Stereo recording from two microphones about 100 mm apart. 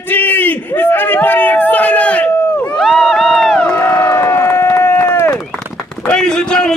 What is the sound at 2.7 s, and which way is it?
Speech, centre (ahead or behind).